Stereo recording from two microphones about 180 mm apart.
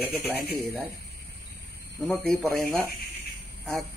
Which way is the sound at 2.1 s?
5° left (ahead or behind).